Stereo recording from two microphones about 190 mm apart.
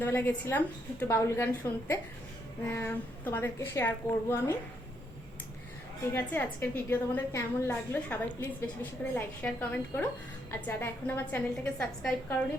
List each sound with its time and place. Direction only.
0.0 s a woman's voice: 10° left (ahead or behind)
2.6 s a woman's voice: 10° left (ahead or behind)
6.1 s a woman's voice: 10° left (ahead or behind)